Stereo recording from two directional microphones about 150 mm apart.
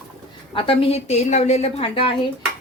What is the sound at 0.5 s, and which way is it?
A woman's voice, 35° left (ahead or behind).